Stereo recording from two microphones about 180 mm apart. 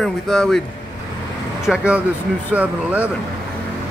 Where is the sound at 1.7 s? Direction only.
5° right (ahead or behind).